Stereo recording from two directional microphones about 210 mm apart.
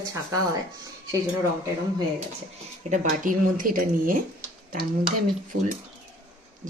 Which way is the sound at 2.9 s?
40° right (ahead or behind).